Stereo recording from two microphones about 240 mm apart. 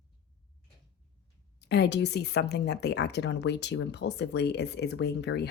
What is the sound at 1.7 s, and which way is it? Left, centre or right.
Speech, left.